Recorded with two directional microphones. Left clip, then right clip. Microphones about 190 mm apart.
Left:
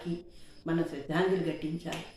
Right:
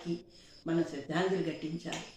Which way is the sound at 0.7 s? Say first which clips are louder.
Left 1 dB; 5° left (ahead or behind).